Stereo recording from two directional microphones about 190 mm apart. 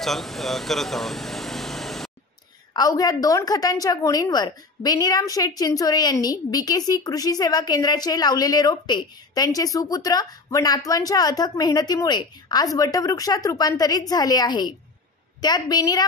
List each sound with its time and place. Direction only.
0.0 s vehicle: centre (ahead or behind)
2.7 s a woman's voice: 20° left (ahead or behind)